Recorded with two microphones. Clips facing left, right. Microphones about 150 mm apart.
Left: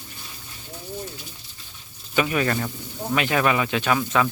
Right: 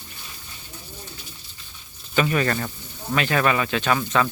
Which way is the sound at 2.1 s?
10° left (ahead or behind).